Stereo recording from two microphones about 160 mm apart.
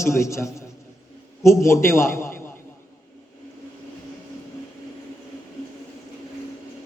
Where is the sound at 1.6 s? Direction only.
15° left (ahead or behind).